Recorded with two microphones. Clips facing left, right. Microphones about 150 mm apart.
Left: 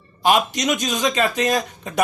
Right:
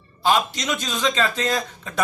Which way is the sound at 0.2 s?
15° left (ahead or behind).